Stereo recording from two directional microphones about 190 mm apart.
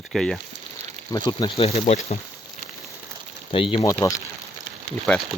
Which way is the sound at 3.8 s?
15° left (ahead or behind).